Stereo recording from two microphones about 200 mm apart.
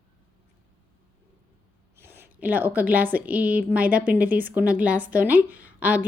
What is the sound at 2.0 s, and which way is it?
A woman's voice, 10° right (ahead or behind).